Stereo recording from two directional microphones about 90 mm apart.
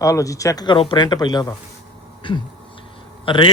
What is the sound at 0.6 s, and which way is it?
Speech, 65° left (ahead or behind).